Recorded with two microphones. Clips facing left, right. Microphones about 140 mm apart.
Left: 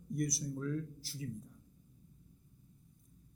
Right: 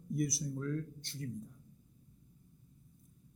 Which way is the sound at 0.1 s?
Centre (ahead or behind).